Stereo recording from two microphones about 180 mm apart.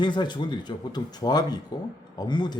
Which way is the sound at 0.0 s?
25° left (ahead or behind).